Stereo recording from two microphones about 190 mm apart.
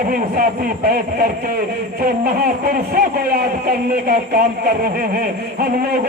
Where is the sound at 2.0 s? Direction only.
50° right (ahead or behind).